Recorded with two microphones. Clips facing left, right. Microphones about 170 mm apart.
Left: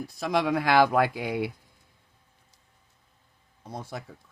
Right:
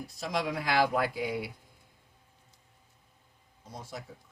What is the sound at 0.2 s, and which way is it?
Speech, 60° left (ahead or behind).